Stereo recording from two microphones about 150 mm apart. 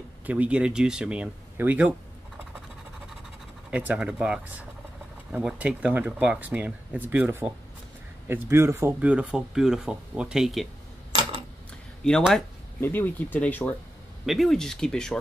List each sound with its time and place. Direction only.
0.3 s speech: 10° right (ahead or behind)
3.7 s speech: 10° right (ahead or behind)
12.2 s speech: centre (ahead or behind)
12.8 s speech: 10° left (ahead or behind)
14.2 s speech: centre (ahead or behind)